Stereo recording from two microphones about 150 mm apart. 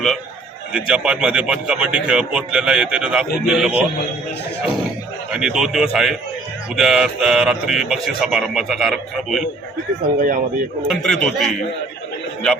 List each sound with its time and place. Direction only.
0.7 s speech: 5° right (ahead or behind)
5.3 s speech: 5° right (ahead or behind)
10.2 s speech: 65° right (ahead or behind)
10.8 s speech: 5° left (ahead or behind)